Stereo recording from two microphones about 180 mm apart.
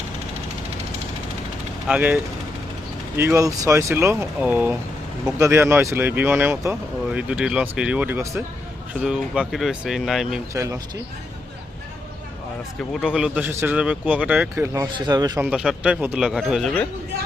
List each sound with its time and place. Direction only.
1.9 s speech: 10° right (ahead or behind)
3.2 s speech: 15° right (ahead or behind)
10.5 s speech: 15° right (ahead or behind)
12.9 s speech: 5° right (ahead or behind); by 15.3 s 20° right (ahead or behind)
15.4 s speech: 5° right (ahead or behind)